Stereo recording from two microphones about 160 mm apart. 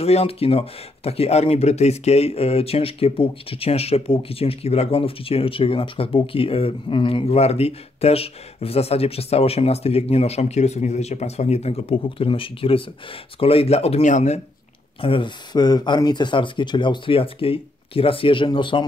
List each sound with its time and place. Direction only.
0.0 s speech: 40° left (ahead or behind)
15.0 s speech: 35° left (ahead or behind)